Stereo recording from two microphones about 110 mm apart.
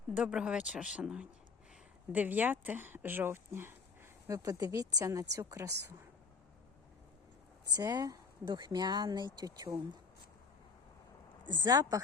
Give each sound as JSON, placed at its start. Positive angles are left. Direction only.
{"t": 0.1, "sound": "speech", "side_deg": -10}
{"t": 7.8, "sound": "speech", "side_deg": -35}
{"t": 11.4, "sound": "speech", "side_deg": -40}